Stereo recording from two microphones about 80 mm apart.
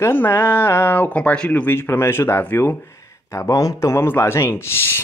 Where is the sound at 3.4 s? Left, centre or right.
Left.